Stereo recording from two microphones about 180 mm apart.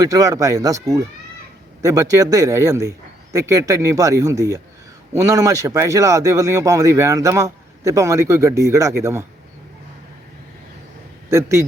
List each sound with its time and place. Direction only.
0.0 s speech: 20° right (ahead or behind)
11.3 s speech: 15° right (ahead or behind)